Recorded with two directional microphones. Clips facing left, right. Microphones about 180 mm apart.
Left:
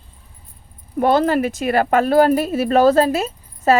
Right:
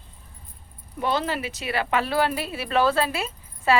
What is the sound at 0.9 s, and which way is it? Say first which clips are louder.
Speech: left 10 dB; 50° left (ahead or behind).